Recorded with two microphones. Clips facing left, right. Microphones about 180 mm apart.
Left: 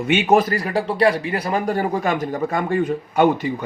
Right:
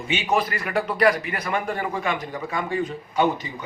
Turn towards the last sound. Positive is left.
turn(degrees=55)  # may be behind; listen again after turning